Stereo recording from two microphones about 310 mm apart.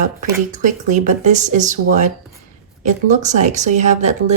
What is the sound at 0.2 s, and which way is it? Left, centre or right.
Speech, right.